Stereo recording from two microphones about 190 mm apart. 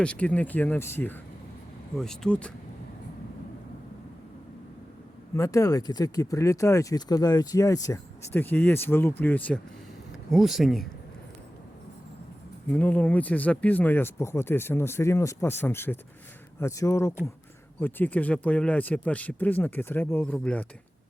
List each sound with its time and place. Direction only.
0.0 s speech: 5° left (ahead or behind)
5.3 s speech: 15° left (ahead or behind); by 10.8 s centre (ahead or behind)
12.6 s speech: 10° left (ahead or behind)